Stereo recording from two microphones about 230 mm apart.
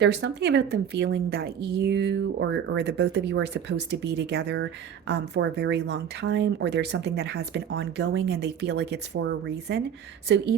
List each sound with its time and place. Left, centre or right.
0.0 s a woman's voice: right
9.2 s a woman's voice: right